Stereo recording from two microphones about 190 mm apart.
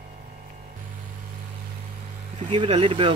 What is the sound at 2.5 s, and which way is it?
Speech, 30° right (ahead or behind).